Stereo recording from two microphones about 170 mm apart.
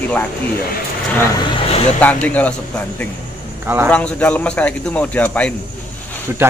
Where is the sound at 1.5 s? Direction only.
35° left (ahead or behind).